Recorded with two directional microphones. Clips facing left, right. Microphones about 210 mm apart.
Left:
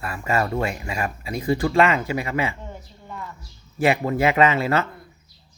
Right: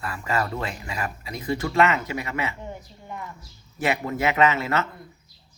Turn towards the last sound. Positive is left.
turn(degrees=30)  # may be behind; listen again after turning